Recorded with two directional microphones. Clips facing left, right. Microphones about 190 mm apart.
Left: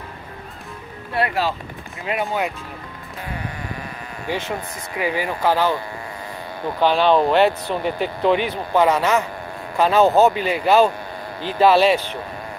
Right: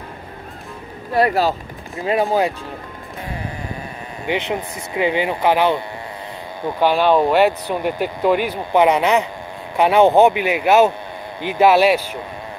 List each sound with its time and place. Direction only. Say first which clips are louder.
1.1 s speech: right 5 dB; 40° right (ahead or behind)
4.3 s speech: right 4 dB; 20° right (ahead or behind)
6.8 s speech: right 1 dB; 10° right (ahead or behind)